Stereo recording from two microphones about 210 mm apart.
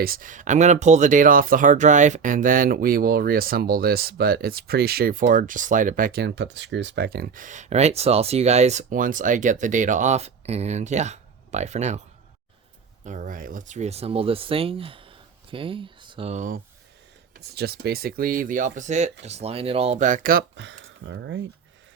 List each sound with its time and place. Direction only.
0.0 s speech: 40° right (ahead or behind)
13.1 s speech: 40° right (ahead or behind)
17.3 s speech: 50° right (ahead or behind)
20.6 s speech: 60° right (ahead or behind)